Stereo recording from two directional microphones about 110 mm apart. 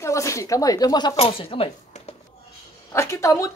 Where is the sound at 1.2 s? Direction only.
55° left (ahead or behind).